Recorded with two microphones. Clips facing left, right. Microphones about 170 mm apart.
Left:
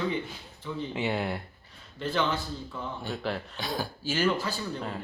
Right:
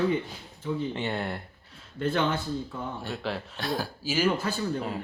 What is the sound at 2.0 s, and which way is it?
Speech, 50° right (ahead or behind).